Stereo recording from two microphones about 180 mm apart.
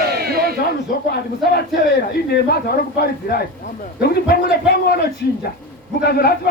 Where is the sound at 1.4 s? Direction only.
60° left (ahead or behind).